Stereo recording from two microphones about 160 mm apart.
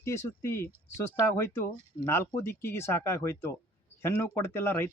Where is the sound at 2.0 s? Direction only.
15° left (ahead or behind).